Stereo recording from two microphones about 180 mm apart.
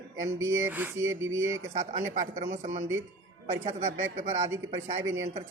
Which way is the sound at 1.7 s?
40° right (ahead or behind).